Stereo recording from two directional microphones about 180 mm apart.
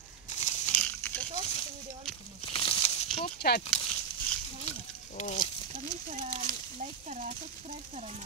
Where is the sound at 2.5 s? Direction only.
30° left (ahead or behind).